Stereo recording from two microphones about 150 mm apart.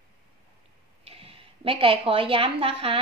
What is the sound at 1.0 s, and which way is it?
A woman's voice, 40° right (ahead or behind).